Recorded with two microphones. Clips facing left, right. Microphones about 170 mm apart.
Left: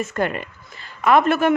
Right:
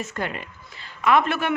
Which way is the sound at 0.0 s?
50° left (ahead or behind).